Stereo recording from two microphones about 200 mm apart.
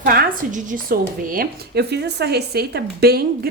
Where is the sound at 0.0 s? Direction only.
45° right (ahead or behind).